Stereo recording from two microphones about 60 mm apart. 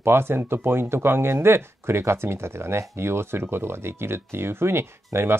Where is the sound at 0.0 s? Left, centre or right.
Right.